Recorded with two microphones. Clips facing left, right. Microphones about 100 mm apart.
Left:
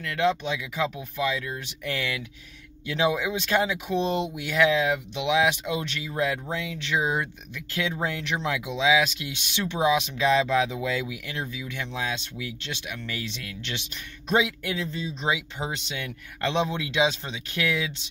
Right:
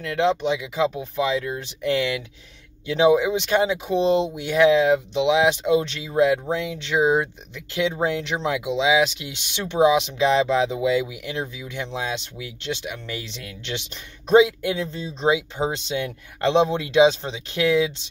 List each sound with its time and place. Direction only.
0.0 s speech: 25° right (ahead or behind)